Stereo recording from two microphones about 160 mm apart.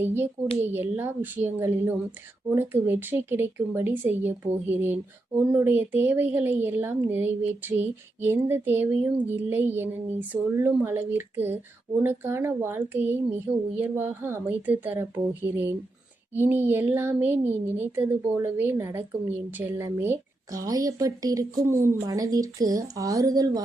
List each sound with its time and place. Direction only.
0.0 s a woman's voice: 15° right (ahead or behind)